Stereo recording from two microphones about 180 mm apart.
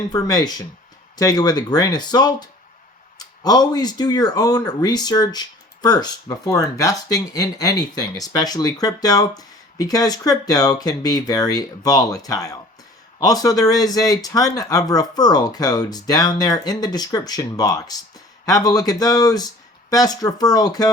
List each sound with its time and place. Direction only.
0.1 s speech: 20° left (ahead or behind)